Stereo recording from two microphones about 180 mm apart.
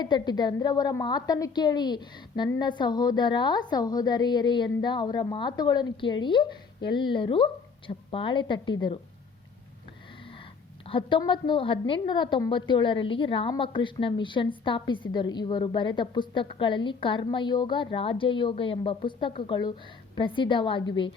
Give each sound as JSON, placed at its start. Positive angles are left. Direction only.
{"t": 0.0, "sound": "a woman's voice", "side_deg": 25}
{"t": 10.8, "sound": "a woman's voice", "side_deg": 30}